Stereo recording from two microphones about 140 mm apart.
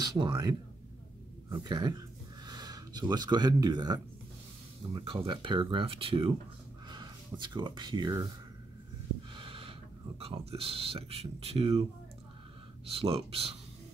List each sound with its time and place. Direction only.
0.0 s speech: 30° right (ahead or behind)
9.3 s speech: 40° right (ahead or behind)